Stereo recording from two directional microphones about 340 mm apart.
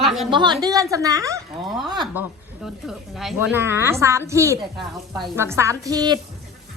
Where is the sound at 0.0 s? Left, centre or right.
Centre.